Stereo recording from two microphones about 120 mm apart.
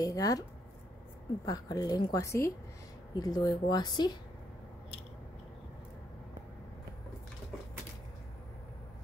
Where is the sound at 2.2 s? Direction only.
25° left (ahead or behind).